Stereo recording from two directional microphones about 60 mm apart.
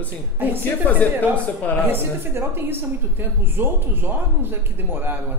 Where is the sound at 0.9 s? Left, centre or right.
Left.